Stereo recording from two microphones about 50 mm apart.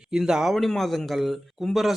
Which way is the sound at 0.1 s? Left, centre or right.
Centre.